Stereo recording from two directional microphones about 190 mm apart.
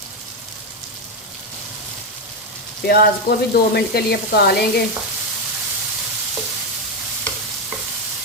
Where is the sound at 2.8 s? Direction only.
55° left (ahead or behind).